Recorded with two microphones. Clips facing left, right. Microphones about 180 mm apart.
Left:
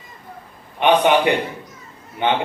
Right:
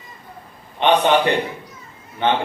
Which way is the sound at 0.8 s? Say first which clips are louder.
Left 1 dB; 15° left (ahead or behind).